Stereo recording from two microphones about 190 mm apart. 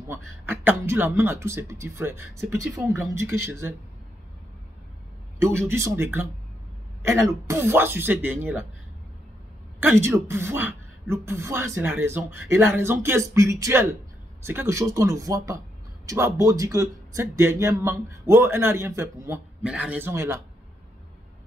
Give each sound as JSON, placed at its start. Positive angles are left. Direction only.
{"t": 0.1, "sound": "speech", "side_deg": -10}
{"t": 5.4, "sound": "speech", "side_deg": -10}
{"t": 9.8, "sound": "speech", "side_deg": -10}